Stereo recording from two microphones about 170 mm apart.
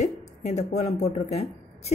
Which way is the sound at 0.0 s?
40° left (ahead or behind).